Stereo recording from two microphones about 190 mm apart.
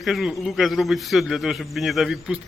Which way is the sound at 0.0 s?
Centre (ahead or behind).